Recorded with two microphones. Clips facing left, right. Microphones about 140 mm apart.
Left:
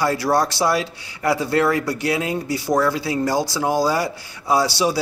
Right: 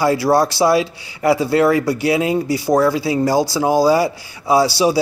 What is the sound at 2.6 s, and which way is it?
Speech, 30° right (ahead or behind).